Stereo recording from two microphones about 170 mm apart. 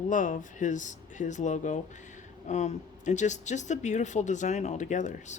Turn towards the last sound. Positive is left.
turn(degrees=45)  # may be behind; listen again after turning